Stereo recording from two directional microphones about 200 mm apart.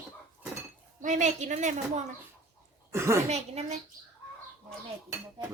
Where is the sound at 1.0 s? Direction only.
40° right (ahead or behind).